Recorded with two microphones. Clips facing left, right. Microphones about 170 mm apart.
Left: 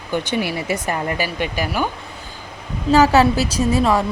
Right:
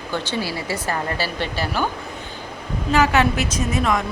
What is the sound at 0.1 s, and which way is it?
Speech, 20° left (ahead or behind).